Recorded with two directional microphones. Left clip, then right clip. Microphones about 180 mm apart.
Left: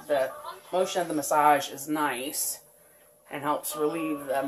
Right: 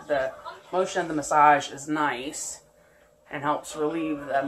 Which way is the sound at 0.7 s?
25° left (ahead or behind).